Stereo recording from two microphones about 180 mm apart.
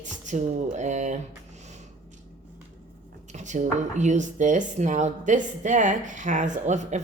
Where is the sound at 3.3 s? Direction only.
40° right (ahead or behind).